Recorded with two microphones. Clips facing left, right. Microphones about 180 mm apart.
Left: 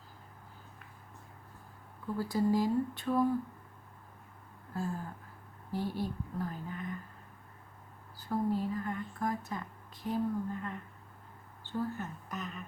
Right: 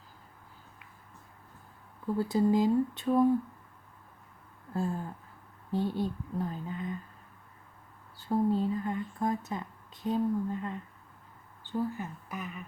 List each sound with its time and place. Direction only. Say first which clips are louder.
2.1 s speech: right 4 dB; 20° right (ahead or behind)
5.7 s speech: right 4 dB; 20° right (ahead or behind)
8.1 s speech: right 4 dB; 25° right (ahead or behind); by 12.6 s 10° right (ahead or behind)